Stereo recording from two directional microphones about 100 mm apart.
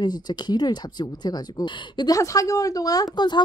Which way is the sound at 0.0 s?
45° left (ahead or behind).